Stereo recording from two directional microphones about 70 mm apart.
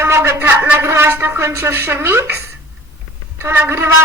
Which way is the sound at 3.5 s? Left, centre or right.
Right.